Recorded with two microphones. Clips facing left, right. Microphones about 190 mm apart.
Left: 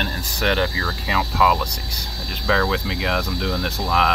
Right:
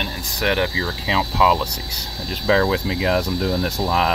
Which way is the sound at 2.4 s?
30° right (ahead or behind).